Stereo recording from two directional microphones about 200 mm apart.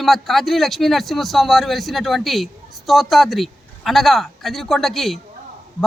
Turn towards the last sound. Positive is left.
turn(degrees=0)  # may be behind; listen again after turning